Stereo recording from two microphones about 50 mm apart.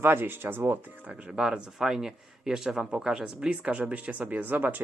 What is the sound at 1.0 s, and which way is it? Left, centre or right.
Speech, right.